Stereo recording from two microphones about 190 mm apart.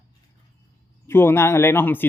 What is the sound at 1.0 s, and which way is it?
A man's voice, 10° left (ahead or behind).